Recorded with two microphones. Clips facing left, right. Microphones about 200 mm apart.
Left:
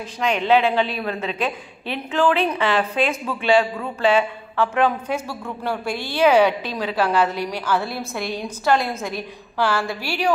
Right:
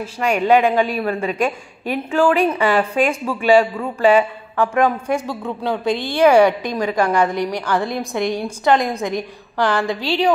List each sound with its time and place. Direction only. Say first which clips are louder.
0.0 s a woman's voice: right 4 dB; 10° right (ahead or behind)